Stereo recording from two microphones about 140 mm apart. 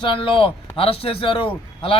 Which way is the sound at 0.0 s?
40° left (ahead or behind).